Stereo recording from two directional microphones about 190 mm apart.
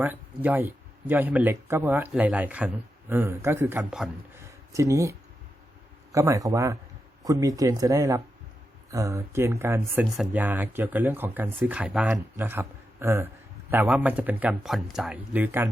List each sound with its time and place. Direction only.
0.0 s speech: 10° right (ahead or behind)
4.7 s speech: 15° right (ahead or behind)